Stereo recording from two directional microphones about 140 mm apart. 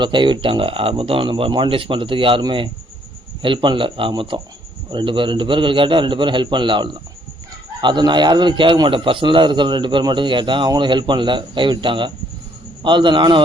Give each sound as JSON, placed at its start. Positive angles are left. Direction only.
{"t": 0.0, "sound": "a man's voice", "side_deg": -35}